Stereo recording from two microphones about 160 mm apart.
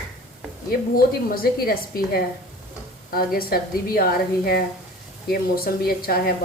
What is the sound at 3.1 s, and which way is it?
Speech, 65° left (ahead or behind).